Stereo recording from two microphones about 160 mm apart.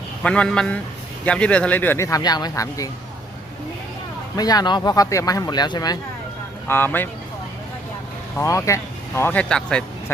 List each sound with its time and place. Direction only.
0.2 s speech: 5° left (ahead or behind)
4.4 s speech: 25° left (ahead or behind)
6.7 s speech: 15° left (ahead or behind)
8.4 s speech: 20° left (ahead or behind)